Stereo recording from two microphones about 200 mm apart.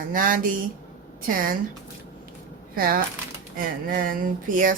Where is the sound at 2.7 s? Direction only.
45° right (ahead or behind).